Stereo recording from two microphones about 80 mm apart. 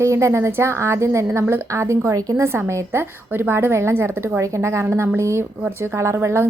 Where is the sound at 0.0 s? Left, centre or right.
Right.